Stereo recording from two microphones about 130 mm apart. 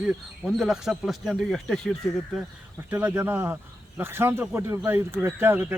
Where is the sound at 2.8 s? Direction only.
15° right (ahead or behind).